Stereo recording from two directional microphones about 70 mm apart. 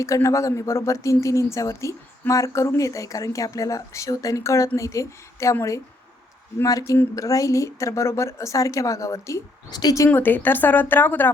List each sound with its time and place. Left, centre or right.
0.0 s a woman's voice: left
6.7 s a woman's voice: left
9.6 s a woman's voice: left
10.1 s a woman's voice: left